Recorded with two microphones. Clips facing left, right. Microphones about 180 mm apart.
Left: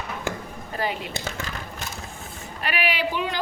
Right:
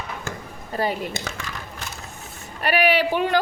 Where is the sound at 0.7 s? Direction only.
45° right (ahead or behind).